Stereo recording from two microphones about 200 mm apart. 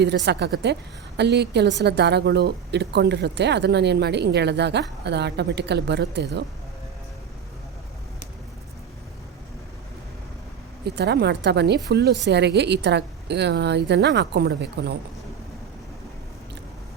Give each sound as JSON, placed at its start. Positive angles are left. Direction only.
{"t": 0.0, "sound": "speech", "side_deg": -60}
{"t": 10.8, "sound": "speech", "side_deg": -55}